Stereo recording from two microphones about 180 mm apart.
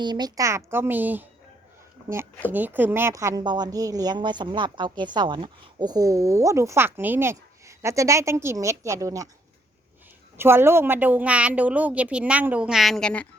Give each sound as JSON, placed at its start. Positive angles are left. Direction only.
{"t": 0.0, "sound": "a woman's voice", "side_deg": -25}
{"t": 2.5, "sound": "a woman's voice", "side_deg": -10}
{"t": 10.3, "sound": "a woman's voice", "side_deg": -15}